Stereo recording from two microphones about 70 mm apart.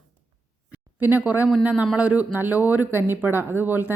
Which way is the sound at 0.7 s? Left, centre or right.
Right.